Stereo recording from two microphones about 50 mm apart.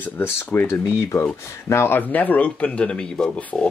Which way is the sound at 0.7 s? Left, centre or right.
Left.